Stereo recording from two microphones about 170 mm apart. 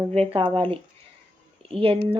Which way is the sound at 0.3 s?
30° right (ahead or behind).